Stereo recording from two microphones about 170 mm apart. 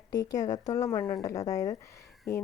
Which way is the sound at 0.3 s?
20° left (ahead or behind).